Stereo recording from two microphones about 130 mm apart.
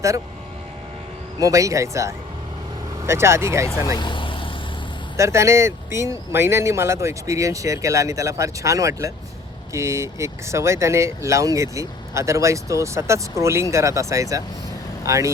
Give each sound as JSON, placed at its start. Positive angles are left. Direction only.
{"t": 1.4, "sound": "speech", "side_deg": -25}
{"t": 3.9, "sound": "vehicle", "side_deg": 35}
{"t": 5.1, "sound": "speech", "side_deg": -20}